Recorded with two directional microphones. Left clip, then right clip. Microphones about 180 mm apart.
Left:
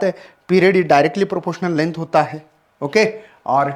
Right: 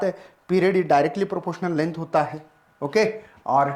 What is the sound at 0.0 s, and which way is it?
Speech, 40° left (ahead or behind).